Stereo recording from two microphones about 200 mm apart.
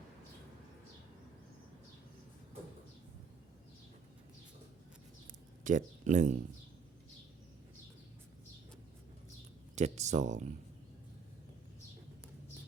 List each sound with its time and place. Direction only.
5.6 s speech: 40° right (ahead or behind)
9.7 s speech: 35° right (ahead or behind)